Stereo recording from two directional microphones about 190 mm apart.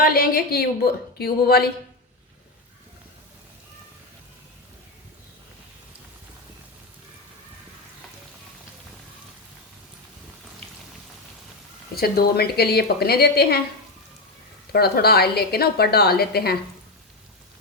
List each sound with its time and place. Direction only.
0.0 s a woman's voice: 50° left (ahead or behind)
11.9 s a woman's voice: 55° left (ahead or behind)
14.7 s a woman's voice: 55° left (ahead or behind)